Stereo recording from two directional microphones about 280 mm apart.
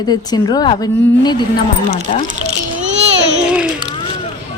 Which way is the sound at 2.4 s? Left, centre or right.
Right.